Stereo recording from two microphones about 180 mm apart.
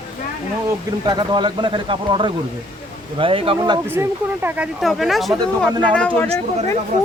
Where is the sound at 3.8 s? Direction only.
10° right (ahead or behind); by 6.3 s 5° left (ahead or behind).